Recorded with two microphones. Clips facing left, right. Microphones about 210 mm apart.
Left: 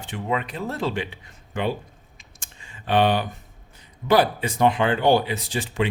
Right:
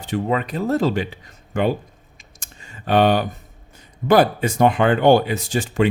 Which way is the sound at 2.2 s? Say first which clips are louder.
Right 5 dB; 40° right (ahead or behind).